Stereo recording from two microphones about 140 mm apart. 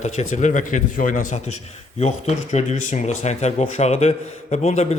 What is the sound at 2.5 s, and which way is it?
A man's voice, 55° left (ahead or behind).